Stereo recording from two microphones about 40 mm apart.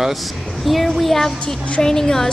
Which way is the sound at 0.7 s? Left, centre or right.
Centre.